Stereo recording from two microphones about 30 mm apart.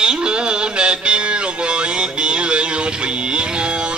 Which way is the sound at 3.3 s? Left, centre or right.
Right.